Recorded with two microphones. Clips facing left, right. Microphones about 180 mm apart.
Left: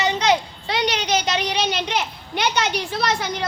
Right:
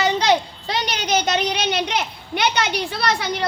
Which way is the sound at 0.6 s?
50° right (ahead or behind).